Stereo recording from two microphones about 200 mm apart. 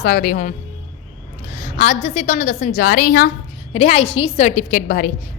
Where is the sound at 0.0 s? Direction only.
45° left (ahead or behind).